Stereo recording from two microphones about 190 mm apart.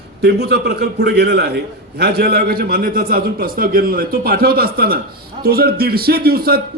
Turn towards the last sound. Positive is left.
turn(degrees=-55)  # may be behind; listen again after turning